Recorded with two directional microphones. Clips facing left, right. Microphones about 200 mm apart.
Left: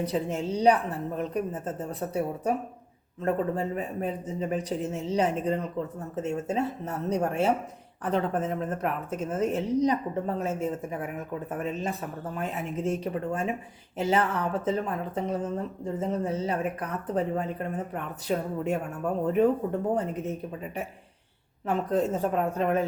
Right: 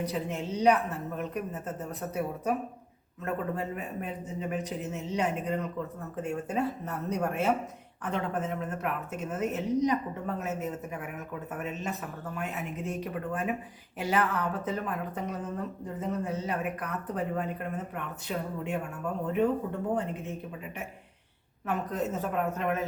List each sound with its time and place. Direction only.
0.1 s speech: 30° left (ahead or behind)
21.7 s speech: 30° left (ahead or behind)